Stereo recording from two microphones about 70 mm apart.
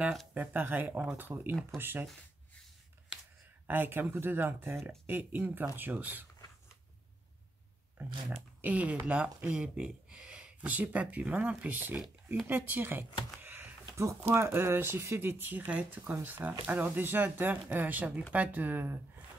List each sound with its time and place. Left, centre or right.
0.3 s speech: right
3.6 s speech: right
8.5 s speech: right
13.8 s speech: right